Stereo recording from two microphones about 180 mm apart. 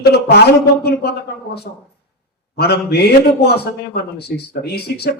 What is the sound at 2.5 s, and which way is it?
A man's voice, 65° left (ahead or behind).